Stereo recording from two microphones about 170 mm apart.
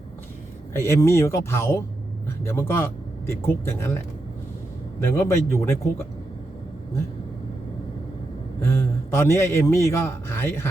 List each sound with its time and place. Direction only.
0.7 s a man's voice: 15° left (ahead or behind)
5.0 s a man's voice: 15° left (ahead or behind)
8.6 s a man's voice: 15° left (ahead or behind)